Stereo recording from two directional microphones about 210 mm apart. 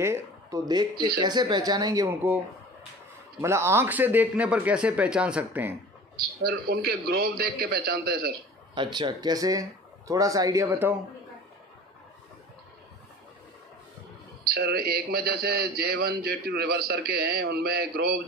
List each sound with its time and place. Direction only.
0.0 s speech: 15° right (ahead or behind)
3.3 s speech: 10° right (ahead or behind)
6.4 s a man's voice: 50° right (ahead or behind)
8.7 s speech: 20° right (ahead or behind)
14.4 s a man's voice: 50° right (ahead or behind)